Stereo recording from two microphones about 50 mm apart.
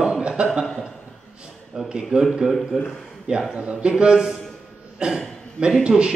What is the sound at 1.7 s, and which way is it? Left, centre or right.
Speech, centre.